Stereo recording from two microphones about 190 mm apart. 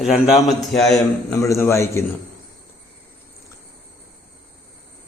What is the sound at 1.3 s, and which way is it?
Speech, 15° left (ahead or behind).